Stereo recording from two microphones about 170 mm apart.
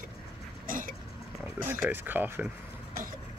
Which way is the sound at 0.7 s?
55° right (ahead or behind).